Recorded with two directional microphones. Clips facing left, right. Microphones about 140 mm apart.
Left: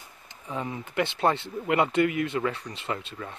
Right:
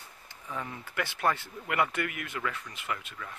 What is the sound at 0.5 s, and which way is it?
Speech, 20° left (ahead or behind).